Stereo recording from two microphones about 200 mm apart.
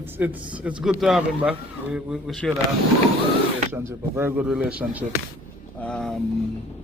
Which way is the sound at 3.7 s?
15° right (ahead or behind).